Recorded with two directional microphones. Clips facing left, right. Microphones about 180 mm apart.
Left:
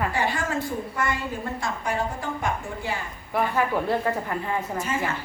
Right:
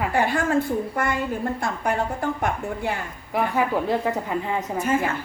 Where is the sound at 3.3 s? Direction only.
10° right (ahead or behind).